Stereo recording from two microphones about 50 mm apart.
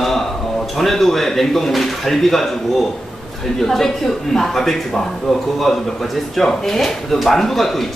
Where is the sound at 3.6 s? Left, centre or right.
Centre.